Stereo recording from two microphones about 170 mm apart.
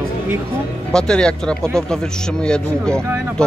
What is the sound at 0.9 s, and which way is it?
Speech, 5° left (ahead or behind).